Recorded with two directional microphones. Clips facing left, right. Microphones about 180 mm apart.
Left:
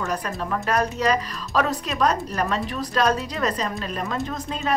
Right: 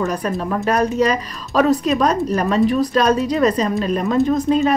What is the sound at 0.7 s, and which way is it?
Speech, 20° right (ahead or behind).